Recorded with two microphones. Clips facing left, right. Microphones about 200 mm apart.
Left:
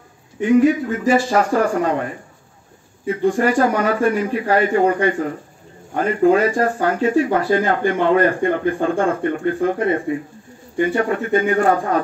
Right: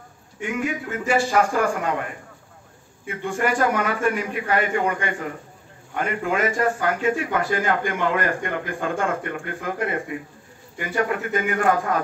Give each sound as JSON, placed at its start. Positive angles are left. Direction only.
{"t": 0.4, "sound": "speech", "side_deg": 35}
{"t": 3.1, "sound": "speech", "side_deg": 35}